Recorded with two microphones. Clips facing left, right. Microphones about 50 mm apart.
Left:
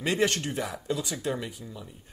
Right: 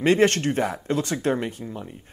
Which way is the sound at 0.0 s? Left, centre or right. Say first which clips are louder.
Right 8 dB; right.